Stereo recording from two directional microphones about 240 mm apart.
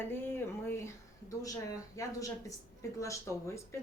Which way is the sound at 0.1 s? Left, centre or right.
Centre.